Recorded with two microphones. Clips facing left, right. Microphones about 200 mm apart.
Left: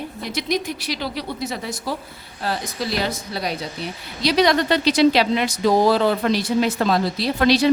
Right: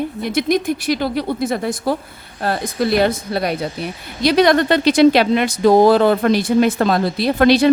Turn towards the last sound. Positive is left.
turn(degrees=-55)  # may be behind; listen again after turning